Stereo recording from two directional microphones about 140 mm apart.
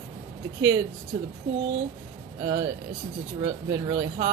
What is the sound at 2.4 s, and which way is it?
Speech, 25° right (ahead or behind).